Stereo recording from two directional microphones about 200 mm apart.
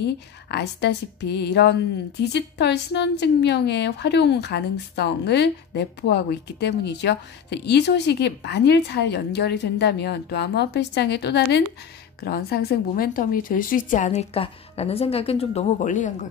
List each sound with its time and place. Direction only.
0.0 s a woman's voice: 55° left (ahead or behind); by 16.3 s 40° left (ahead or behind)